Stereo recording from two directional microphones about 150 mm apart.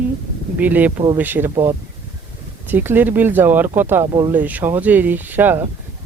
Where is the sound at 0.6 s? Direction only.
10° right (ahead or behind).